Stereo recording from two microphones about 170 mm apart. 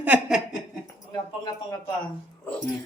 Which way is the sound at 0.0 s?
5° right (ahead or behind).